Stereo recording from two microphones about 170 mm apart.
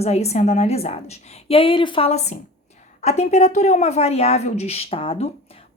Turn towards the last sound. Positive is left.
turn(degrees=35)  # may be behind; listen again after turning